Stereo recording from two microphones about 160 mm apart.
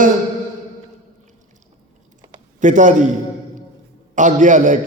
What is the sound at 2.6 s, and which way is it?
Speech, 50° right (ahead or behind).